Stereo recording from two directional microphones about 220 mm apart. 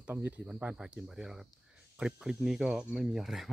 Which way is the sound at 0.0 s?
10° right (ahead or behind).